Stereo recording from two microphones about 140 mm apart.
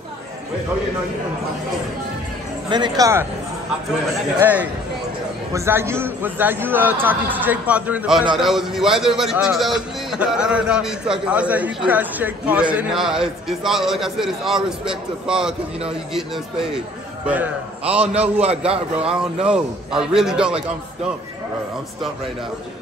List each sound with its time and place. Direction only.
2.7 s speech: 30° right (ahead or behind)
4.4 s a man's voice: 10° right (ahead or behind)
17.3 s a man's voice: 10° right (ahead or behind)
18.0 s a man's voice: 45° right (ahead or behind)
19.4 s a man's voice: 5° right (ahead or behind)